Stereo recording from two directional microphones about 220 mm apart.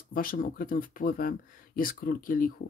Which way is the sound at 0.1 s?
40° left (ahead or behind).